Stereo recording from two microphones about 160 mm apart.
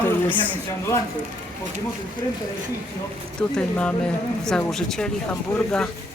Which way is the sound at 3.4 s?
5° left (ahead or behind).